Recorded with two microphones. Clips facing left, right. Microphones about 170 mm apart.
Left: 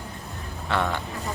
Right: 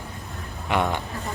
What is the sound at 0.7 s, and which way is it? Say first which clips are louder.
Speech: right 2 dB; 15° right (ahead or behind).